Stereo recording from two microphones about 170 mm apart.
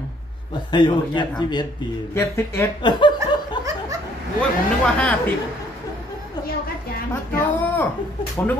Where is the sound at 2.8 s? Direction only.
25° left (ahead or behind).